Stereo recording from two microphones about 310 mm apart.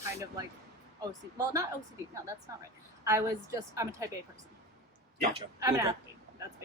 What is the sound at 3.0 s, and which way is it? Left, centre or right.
Speech, centre.